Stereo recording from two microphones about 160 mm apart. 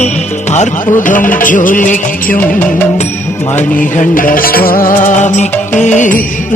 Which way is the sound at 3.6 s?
55° left (ahead or behind).